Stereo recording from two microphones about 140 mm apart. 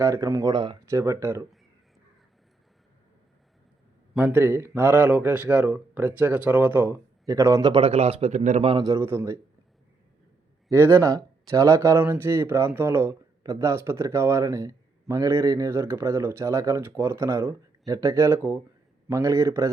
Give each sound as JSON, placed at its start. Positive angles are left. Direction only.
{"t": 0.0, "sound": "speech", "side_deg": -20}
{"t": 0.9, "sound": "speech", "side_deg": -20}
{"t": 4.2, "sound": "speech", "side_deg": -15}
{"t": 7.7, "sound": "a man's voice", "side_deg": -45}
{"t": 8.8, "sound": "speech", "side_deg": -20}
{"t": 10.7, "sound": "speech", "side_deg": -15}